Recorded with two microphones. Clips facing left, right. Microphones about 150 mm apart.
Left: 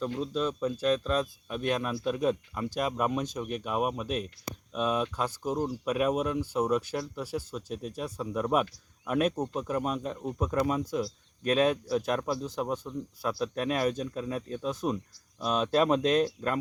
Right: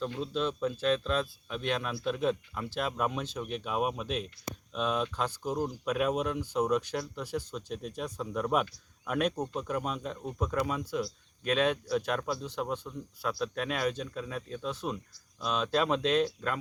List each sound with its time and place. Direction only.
0.0 s speech: 5° left (ahead or behind)
10.7 s speech: 35° left (ahead or behind)
12.5 s speech: 10° left (ahead or behind)
13.6 s speech: 40° left (ahead or behind)
13.9 s speech: 10° left (ahead or behind)
14.2 s speech: 35° left (ahead or behind)
14.8 s speech: 5° left (ahead or behind)
15.4 s speech: 40° left (ahead or behind)